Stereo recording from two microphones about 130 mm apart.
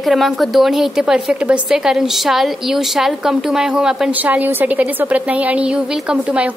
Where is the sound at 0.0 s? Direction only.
Centre (ahead or behind).